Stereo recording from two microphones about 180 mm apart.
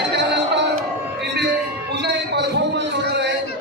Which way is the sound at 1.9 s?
75° right (ahead or behind).